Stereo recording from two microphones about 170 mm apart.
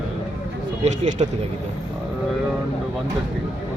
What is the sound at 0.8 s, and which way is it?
Speech, 45° right (ahead or behind).